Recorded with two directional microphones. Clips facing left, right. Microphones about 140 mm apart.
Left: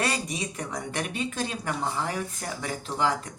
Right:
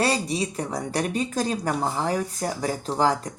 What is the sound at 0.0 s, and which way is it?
Speech, 30° right (ahead or behind).